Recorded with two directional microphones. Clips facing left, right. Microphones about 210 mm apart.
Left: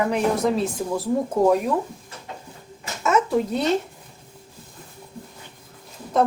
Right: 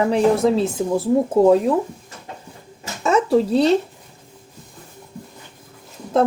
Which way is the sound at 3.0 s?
30° right (ahead or behind).